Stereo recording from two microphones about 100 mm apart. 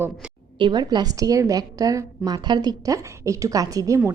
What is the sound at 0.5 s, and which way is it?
A woman's voice, 50° right (ahead or behind).